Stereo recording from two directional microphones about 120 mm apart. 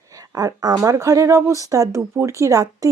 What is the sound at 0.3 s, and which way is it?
Speech, 35° right (ahead or behind).